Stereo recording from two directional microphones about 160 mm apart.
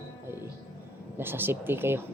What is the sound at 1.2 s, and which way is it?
Speech, 15° right (ahead or behind).